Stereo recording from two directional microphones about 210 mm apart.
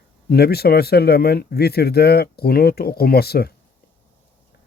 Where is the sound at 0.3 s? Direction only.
50° left (ahead or behind).